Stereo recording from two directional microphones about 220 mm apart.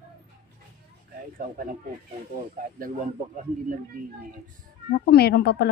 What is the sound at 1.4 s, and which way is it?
Speech, 40° right (ahead or behind).